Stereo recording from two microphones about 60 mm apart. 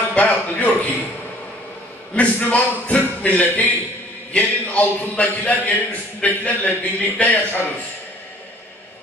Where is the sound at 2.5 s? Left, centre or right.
Left.